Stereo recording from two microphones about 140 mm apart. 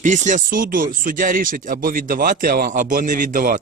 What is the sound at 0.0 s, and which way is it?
Speech, 60° right (ahead or behind).